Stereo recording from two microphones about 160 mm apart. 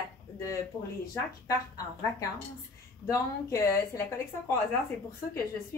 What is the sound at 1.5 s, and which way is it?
A woman's voice, 20° left (ahead or behind).